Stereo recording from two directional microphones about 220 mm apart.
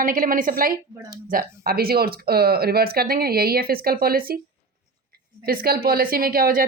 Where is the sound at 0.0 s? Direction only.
40° right (ahead or behind).